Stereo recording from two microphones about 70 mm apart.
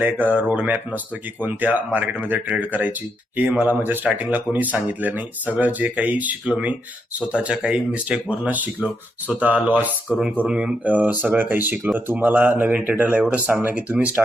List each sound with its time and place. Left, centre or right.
0.0 s speech: right